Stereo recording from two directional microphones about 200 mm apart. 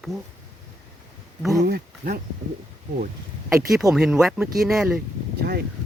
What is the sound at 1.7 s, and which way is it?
Speech, 45° right (ahead or behind).